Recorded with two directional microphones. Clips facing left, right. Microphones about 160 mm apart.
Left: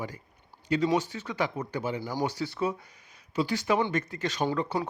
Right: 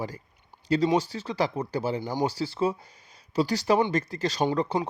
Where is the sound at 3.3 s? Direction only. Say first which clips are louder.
Right 3 dB; 40° right (ahead or behind).